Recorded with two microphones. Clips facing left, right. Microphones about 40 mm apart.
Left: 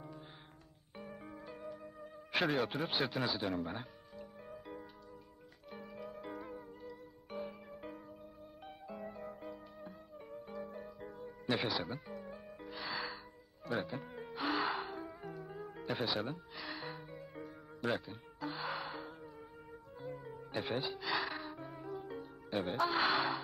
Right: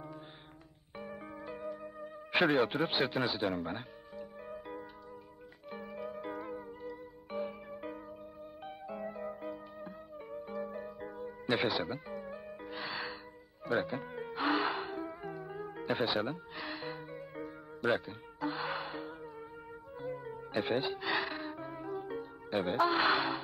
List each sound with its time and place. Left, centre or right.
0.9 s music: centre
22.7 s speech: centre